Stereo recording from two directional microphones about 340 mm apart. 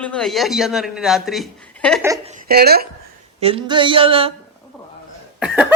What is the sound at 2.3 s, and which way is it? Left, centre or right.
Speech, right.